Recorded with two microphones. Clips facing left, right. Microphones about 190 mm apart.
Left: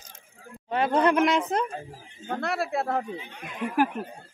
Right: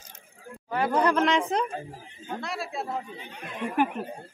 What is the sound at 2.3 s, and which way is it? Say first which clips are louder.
Speech: left 6 dB; 60° left (ahead or behind).